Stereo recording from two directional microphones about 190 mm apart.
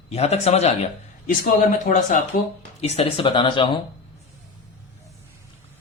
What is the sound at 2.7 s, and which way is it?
Speech, 35° left (ahead or behind).